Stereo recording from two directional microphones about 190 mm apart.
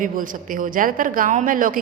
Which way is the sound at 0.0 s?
45° right (ahead or behind).